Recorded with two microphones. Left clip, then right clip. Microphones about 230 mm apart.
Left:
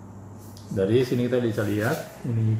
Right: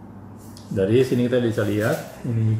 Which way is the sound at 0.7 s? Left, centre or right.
Centre.